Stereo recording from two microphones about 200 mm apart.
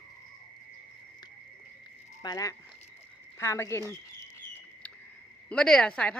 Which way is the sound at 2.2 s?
15° left (ahead or behind).